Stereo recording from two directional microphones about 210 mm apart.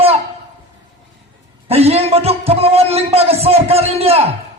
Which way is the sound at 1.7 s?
30° right (ahead or behind).